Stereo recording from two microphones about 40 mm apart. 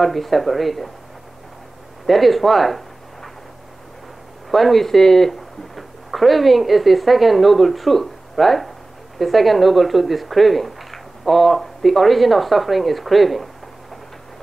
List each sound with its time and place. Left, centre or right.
0.0 s speech: centre
2.0 s speech: centre
4.5 s speech: centre